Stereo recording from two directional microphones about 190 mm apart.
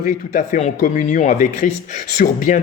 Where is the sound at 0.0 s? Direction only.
45° left (ahead or behind).